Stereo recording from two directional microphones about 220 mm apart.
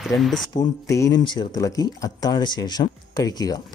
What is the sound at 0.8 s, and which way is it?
Speech, 15° left (ahead or behind).